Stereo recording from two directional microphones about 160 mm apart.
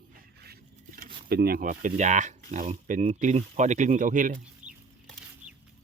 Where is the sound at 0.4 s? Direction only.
80° right.